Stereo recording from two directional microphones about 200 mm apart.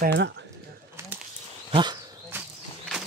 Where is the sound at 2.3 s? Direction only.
10° right (ahead or behind).